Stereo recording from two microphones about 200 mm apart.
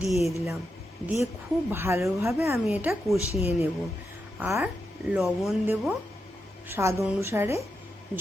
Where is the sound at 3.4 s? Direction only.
30° left (ahead or behind).